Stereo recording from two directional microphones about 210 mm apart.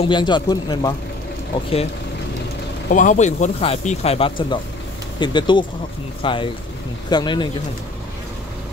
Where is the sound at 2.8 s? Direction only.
40° left (ahead or behind); by 7.5 s 20° left (ahead or behind).